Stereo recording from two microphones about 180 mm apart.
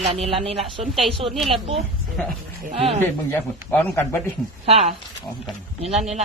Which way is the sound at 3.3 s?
10° left (ahead or behind).